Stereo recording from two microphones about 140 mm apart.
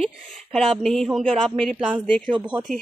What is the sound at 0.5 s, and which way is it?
Speech, centre (ahead or behind).